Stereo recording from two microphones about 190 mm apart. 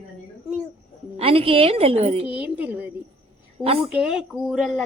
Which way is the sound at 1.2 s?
30° right (ahead or behind).